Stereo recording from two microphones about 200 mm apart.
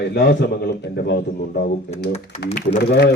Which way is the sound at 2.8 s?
55° left (ahead or behind).